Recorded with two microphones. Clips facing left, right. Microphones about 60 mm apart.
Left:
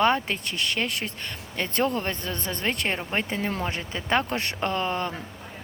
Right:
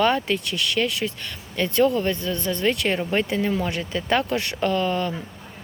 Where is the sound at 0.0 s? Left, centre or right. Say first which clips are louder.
Right 2 dB; left.